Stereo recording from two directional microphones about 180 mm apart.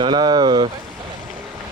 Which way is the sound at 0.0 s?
25° right (ahead or behind).